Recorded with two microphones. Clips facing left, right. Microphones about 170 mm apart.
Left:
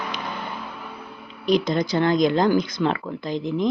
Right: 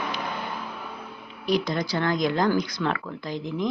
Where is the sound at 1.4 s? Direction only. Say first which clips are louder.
Left 4 dB; 20° left (ahead or behind).